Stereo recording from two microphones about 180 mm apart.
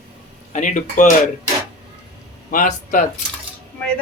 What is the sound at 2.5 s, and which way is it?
Speech, 45° left (ahead or behind).